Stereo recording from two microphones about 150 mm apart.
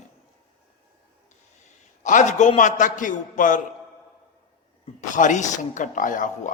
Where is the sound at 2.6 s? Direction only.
55° left (ahead or behind).